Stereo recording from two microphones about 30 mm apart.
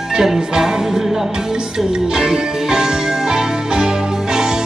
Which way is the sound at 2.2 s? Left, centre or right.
Right.